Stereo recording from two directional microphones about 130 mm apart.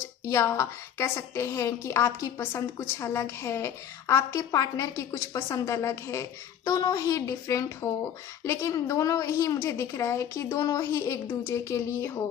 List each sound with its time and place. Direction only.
0.3 s a woman's voice: 25° left (ahead or behind)